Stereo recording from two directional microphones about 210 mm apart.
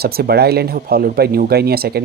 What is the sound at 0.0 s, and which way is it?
Speech, 50° right (ahead or behind).